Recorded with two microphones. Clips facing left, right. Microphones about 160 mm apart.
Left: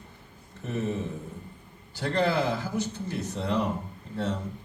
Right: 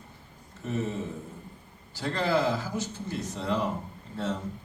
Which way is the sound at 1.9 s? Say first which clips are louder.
Left 1 dB; 60° left (ahead or behind).